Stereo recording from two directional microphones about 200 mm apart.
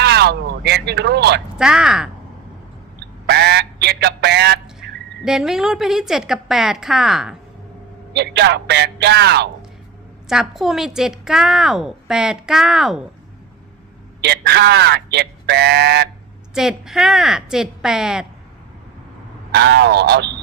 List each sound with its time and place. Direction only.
0.0 s a sound: 55° right (ahead or behind)
1.5 s a woman's voice: 5° right (ahead or behind)
3.2 s a sound: 55° right (ahead or behind)
4.8 s a woman's voice: centre (ahead or behind)
8.1 s speech: 55° right (ahead or behind)
10.2 s a woman's voice: centre (ahead or behind)
14.2 s speech: 55° right (ahead or behind)
16.6 s a woman's voice: centre (ahead or behind)
19.5 s speech: 60° right (ahead or behind)